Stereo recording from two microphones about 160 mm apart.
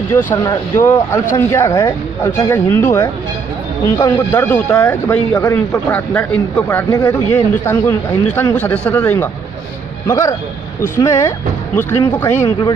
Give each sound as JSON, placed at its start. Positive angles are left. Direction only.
{"t": 0.5, "sound": "speech", "side_deg": 25}
{"t": 12.4, "sound": "speech", "side_deg": 30}